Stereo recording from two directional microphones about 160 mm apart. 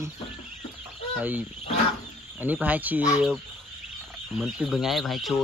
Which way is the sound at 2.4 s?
10° right (ahead or behind).